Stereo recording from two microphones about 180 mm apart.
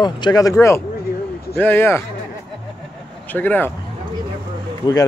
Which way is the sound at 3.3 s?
10° left (ahead or behind).